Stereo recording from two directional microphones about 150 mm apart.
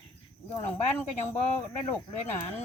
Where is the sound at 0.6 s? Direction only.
15° left (ahead or behind).